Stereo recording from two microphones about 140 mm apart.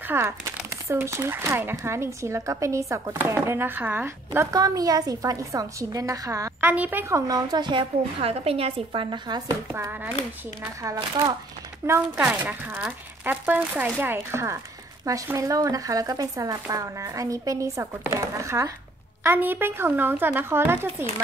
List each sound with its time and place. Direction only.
0.0 s speech: 15° right (ahead or behind)
6.6 s speech: 10° right (ahead or behind); by 9.6 s 30° right (ahead or behind)
9.7 s speech: 15° right (ahead or behind)